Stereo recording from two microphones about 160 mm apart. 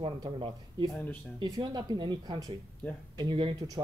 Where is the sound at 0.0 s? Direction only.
30° right (ahead or behind).